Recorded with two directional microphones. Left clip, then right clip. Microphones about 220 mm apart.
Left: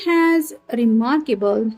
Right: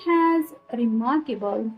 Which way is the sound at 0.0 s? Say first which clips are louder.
Left 4 dB; 40° left (ahead or behind).